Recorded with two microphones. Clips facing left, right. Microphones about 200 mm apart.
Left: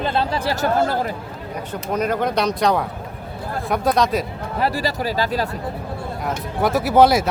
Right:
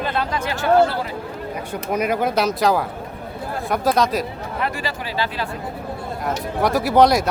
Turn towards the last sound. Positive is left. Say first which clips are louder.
# left 1 dB
turn(degrees=5)  # may be behind; listen again after turning